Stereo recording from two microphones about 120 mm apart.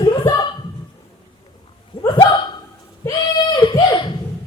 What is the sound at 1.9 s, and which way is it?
Dog, 45° left (ahead or behind).